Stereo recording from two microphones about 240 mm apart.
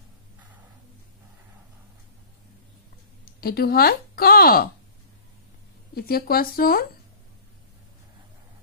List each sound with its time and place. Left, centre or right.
3.3 s speech: left
5.9 s speech: left